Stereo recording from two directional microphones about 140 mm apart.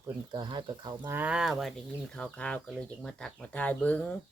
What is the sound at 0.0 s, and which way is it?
Speech, 30° right (ahead or behind).